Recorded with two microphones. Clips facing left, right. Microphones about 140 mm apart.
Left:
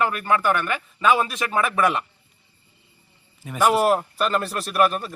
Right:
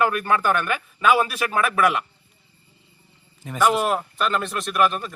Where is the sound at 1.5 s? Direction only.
25° left (ahead or behind).